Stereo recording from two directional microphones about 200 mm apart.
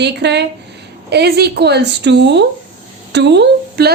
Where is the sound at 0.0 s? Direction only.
55° right (ahead or behind).